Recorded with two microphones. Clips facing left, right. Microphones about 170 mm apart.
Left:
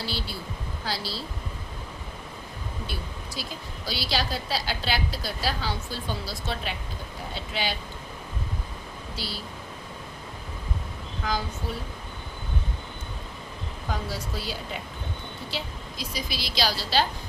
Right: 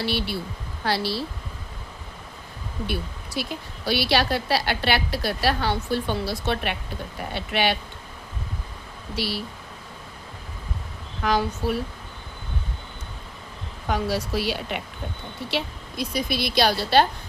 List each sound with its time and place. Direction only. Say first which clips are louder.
0.0 s a woman's voice: right 7 dB; 65° right (ahead or behind)
2.8 s a woman's voice: right 10 dB; 65° right (ahead or behind)
9.1 s a woman's voice: right 9 dB; 70° right (ahead or behind)
11.2 s a woman's voice: right 7 dB; 65° right (ahead or behind)
13.9 s a woman's voice: right 8 dB; 70° right (ahead or behind)